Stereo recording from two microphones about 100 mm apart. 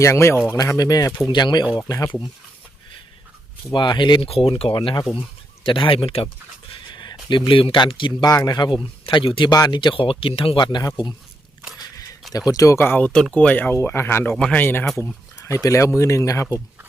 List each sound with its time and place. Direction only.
0.0 s speech: 25° left (ahead or behind)
0.5 s speech: 35° left (ahead or behind)
1.3 s speech: 50° left (ahead or behind)
3.7 s speech: 50° left (ahead or behind)
4.3 s speech: 75° left (ahead or behind)
6.9 s speech: 50° left (ahead or behind)
8.3 s speech: 40° left (ahead or behind); by 9.5 s 60° left (ahead or behind)
9.5 s speech: 45° left (ahead or behind)
11.8 s a sound: 35° left (ahead or behind)
12.3 s speech: 35° left (ahead or behind)
14.3 s speech: 10° left (ahead or behind)
15.4 s speech: 30° left (ahead or behind)